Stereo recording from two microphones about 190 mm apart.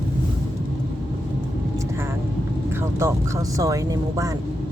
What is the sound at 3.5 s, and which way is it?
Speech, 15° right (ahead or behind).